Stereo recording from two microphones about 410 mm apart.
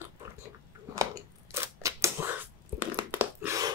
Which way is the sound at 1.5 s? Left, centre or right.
Centre.